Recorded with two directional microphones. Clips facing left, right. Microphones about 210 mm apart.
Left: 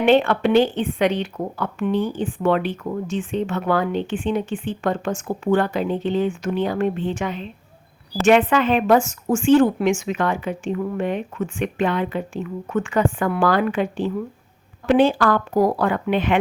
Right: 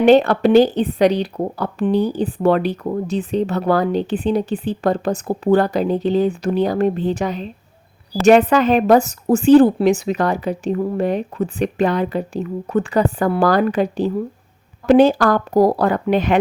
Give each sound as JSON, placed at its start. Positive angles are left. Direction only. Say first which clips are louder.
{"t": 0.0, "sound": "speech", "louder": "right 4 dB", "side_deg": -40}